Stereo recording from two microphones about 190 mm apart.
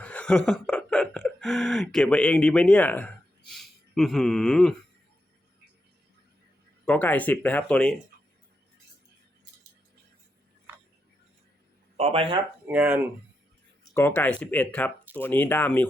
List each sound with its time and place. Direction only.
0.0 s a sound: 5° left (ahead or behind)
6.8 s speech: 10° left (ahead or behind)
11.9 s speech: 30° right (ahead or behind)
12.6 s speech: 10° right (ahead or behind)
13.9 s speech: 10° left (ahead or behind)